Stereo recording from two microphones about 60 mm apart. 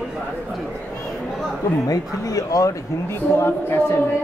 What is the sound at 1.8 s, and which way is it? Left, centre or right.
Speech, left.